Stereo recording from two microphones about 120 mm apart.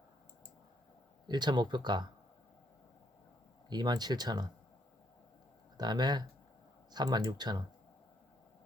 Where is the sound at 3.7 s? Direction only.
35° right (ahead or behind).